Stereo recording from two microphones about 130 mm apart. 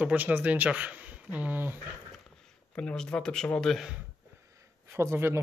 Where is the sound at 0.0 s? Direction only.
10° right (ahead or behind).